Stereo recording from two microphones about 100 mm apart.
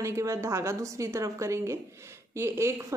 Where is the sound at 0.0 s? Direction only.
30° right (ahead or behind).